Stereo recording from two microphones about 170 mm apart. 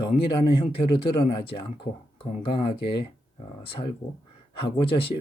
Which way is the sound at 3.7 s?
35° left (ahead or behind).